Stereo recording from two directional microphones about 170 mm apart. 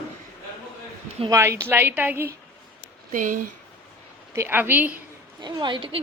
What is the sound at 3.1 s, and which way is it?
Speech, 50° right (ahead or behind).